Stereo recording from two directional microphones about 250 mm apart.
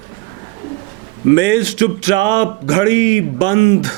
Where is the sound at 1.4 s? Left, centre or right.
Right.